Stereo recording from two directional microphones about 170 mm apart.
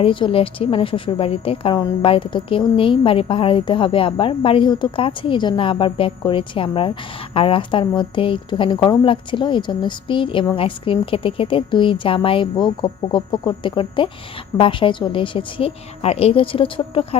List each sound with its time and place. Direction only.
0.0 s a woman's voice: 30° left (ahead or behind)